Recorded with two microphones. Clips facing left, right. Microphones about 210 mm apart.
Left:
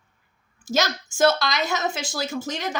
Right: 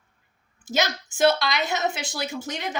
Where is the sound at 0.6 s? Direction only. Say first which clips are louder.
Left 2 dB; 20° right (ahead or behind).